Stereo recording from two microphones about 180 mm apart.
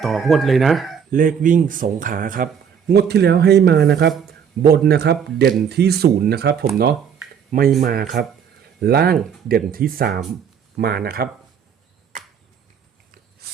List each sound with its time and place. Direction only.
0.0 s speech: centre (ahead or behind)
1.1 s speech: 50° right (ahead or behind)
2.9 s speech: 65° right (ahead or behind)